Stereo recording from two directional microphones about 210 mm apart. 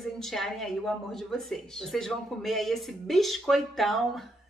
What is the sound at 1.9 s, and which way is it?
A woman's voice, centre (ahead or behind).